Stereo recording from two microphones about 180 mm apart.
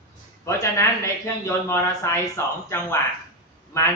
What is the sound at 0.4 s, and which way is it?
Speech, 15° left (ahead or behind).